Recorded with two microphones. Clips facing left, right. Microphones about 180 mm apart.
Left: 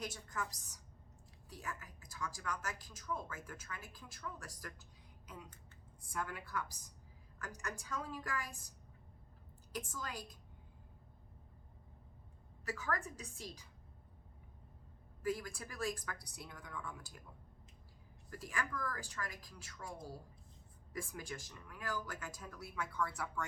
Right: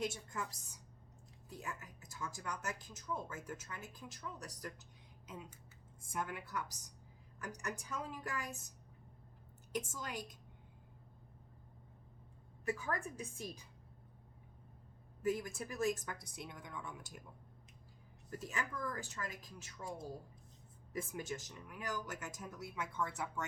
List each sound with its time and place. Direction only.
0.0 s speech: 25° right (ahead or behind)
1.5 s a woman's voice: 20° right (ahead or behind)
9.7 s speech: 20° right (ahead or behind)
12.8 s speech: 20° right (ahead or behind)
15.2 s speech: 20° right (ahead or behind)
18.3 s speech: 20° right (ahead or behind)